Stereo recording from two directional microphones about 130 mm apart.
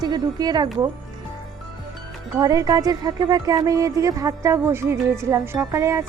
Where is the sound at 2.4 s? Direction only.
30° right (ahead or behind).